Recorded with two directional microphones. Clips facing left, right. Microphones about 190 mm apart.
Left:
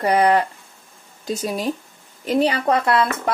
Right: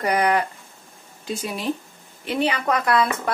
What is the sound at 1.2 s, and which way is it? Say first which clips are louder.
Speech: left 3 dB; 40° left (ahead or behind).